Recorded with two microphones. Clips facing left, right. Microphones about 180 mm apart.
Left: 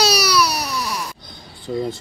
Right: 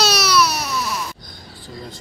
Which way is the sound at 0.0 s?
10° left (ahead or behind).